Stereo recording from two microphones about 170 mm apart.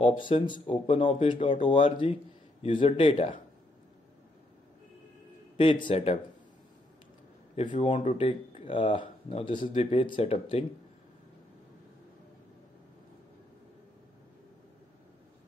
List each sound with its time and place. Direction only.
0.0 s speech: 30° left (ahead or behind)
5.6 s speech: 30° left (ahead or behind)
7.9 s speech: 40° left (ahead or behind)